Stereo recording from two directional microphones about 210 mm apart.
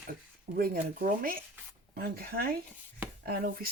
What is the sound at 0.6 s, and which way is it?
Speech, 40° right (ahead or behind).